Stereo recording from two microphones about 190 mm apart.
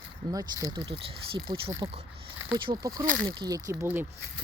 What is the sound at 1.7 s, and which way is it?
Speech, 15° right (ahead or behind).